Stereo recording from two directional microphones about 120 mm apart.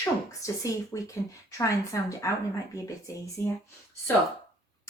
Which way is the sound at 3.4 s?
25° left (ahead or behind).